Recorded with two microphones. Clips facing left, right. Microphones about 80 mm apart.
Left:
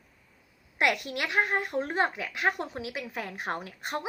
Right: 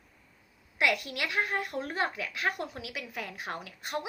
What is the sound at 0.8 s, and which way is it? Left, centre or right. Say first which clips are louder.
A woman's voice: left 2 dB; left.